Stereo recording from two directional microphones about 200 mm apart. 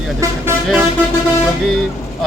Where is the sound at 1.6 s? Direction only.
Centre (ahead or behind).